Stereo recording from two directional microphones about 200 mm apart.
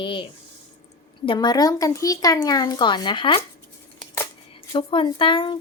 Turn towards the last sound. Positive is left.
turn(degrees=25)  # may be behind; listen again after turning